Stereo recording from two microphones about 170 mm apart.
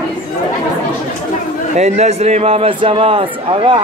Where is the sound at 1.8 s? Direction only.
40° right (ahead or behind).